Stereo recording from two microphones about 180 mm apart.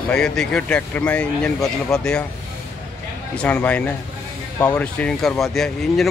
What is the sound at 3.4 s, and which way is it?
Speech, 5° left (ahead or behind).